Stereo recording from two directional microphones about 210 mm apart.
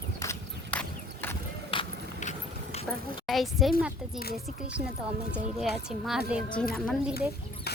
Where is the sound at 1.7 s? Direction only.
30° left (ahead or behind).